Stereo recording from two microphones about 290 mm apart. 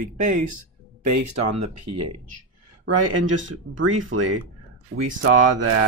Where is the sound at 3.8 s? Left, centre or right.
Right.